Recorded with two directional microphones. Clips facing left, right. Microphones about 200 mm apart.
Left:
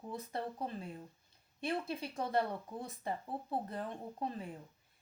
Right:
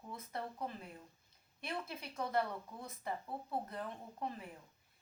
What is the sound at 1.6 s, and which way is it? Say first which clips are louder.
Speech: left 6 dB; 30° left (ahead or behind).